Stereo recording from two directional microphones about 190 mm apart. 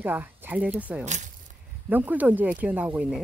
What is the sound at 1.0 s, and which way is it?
Speech, 40° right (ahead or behind).